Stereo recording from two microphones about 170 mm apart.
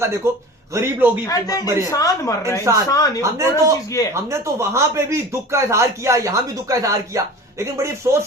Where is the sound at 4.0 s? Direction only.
20° left (ahead or behind).